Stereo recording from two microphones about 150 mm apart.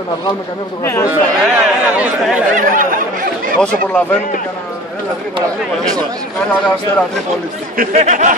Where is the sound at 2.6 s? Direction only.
65° right (ahead or behind).